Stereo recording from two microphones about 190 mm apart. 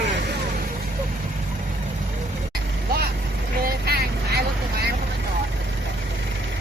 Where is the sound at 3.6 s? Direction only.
55° right (ahead or behind).